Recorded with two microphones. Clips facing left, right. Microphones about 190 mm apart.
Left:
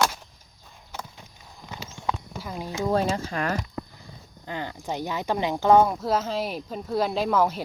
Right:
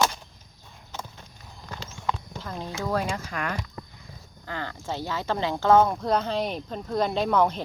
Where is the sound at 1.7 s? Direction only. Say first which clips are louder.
Even; 10° left (ahead or behind); by 3.5 s 30° left (ahead or behind).